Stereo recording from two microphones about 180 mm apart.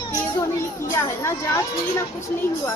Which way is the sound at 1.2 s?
15° left (ahead or behind).